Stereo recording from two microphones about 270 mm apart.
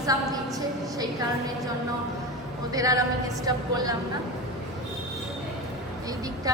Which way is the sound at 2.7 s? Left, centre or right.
Centre.